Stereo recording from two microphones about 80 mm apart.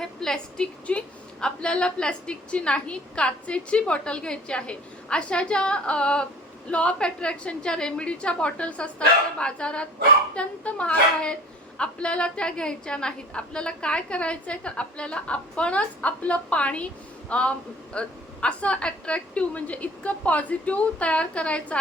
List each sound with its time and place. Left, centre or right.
0.0 s a woman's voice: centre